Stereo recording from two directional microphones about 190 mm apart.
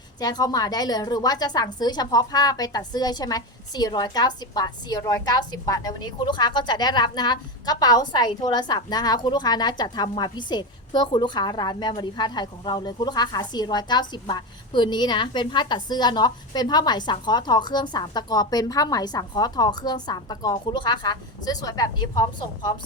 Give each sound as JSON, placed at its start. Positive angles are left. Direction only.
{"t": 0.2, "sound": "a woman's voice", "side_deg": 20}